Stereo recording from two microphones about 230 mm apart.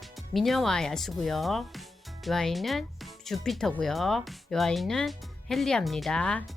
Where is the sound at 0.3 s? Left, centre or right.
Centre.